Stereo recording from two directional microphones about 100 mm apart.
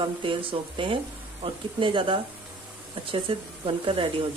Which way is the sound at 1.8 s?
60° right (ahead or behind).